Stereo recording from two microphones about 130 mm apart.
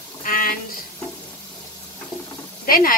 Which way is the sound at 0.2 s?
90° left.